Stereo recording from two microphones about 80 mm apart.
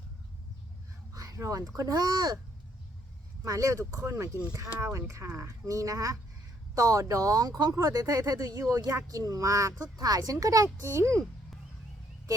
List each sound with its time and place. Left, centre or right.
1.1 s a sound: right
1.7 s speech: right
3.4 s speech: right